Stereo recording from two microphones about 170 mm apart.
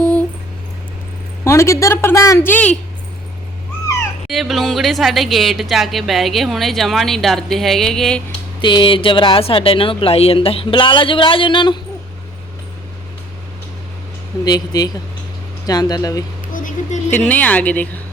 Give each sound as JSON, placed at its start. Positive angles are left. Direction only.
{"t": 1.5, "sound": "a woman's voice", "side_deg": 15}
{"t": 4.3, "sound": "speech", "side_deg": 0}
{"t": 8.6, "sound": "speech", "side_deg": 30}
{"t": 14.4, "sound": "speech", "side_deg": 25}
{"t": 16.5, "sound": "a sound", "side_deg": 50}
{"t": 17.1, "sound": "a woman's voice", "side_deg": 10}